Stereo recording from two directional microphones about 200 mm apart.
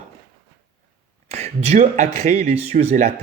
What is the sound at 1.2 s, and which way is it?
Speech, 35° right (ahead or behind).